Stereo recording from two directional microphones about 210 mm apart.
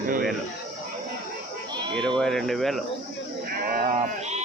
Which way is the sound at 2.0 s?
Centre (ahead or behind).